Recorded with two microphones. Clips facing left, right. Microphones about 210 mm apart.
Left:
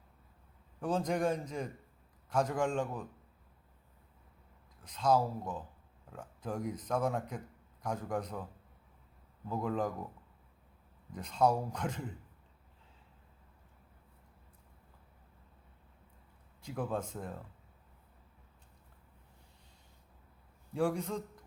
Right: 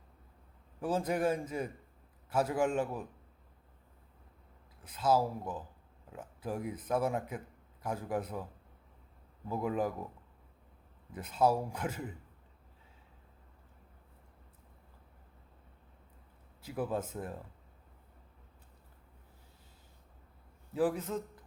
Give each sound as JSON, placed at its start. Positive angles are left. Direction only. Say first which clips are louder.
{"t": 0.8, "sound": "a man's voice", "louder": "even", "side_deg": -5}
{"t": 4.8, "sound": "a man's voice", "louder": "even", "side_deg": -5}
{"t": 9.5, "sound": "a man's voice", "louder": "right 1 dB", "side_deg": -10}
{"t": 11.1, "sound": "a man's voice", "louder": "right 1 dB", "side_deg": -5}
{"t": 16.6, "sound": "a man's voice", "louder": "right 1 dB", "side_deg": -5}
{"t": 20.7, "sound": "a man's voice", "louder": "right 1 dB", "side_deg": -5}